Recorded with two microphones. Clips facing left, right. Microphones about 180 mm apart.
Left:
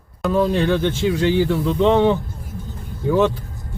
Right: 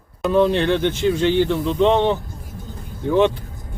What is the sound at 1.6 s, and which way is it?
Speech, 20° right (ahead or behind).